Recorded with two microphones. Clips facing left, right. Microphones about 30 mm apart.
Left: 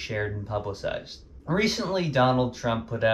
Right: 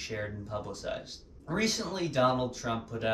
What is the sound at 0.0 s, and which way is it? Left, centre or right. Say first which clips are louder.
Speech: left 6 dB; left.